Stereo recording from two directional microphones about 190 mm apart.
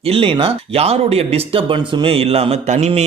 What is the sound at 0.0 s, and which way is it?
Speech, 30° right (ahead or behind).